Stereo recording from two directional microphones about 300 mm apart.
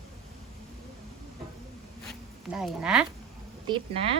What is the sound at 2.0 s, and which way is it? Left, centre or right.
Zipper, centre.